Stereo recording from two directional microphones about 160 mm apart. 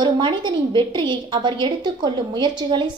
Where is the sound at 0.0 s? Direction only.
30° right (ahead or behind).